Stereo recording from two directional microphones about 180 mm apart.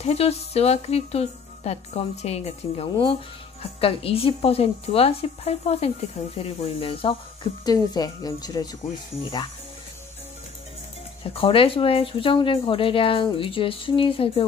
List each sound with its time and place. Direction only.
0.0 s speech: 35° left (ahead or behind)
11.2 s speech: 30° left (ahead or behind)